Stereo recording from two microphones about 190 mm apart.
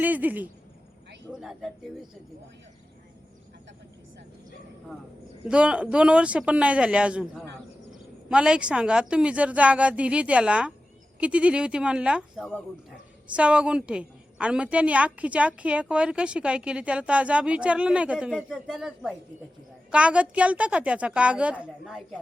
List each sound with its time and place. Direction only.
0.0 s a woman's voice: 10° right (ahead or behind)
5.5 s a woman's voice: 5° right (ahead or behind)
12.4 s speech: 5° left (ahead or behind)
13.3 s a woman's voice: 5° right (ahead or behind)